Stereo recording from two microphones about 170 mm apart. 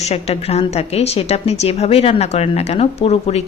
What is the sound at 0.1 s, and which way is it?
A woman's voice, 35° left (ahead or behind).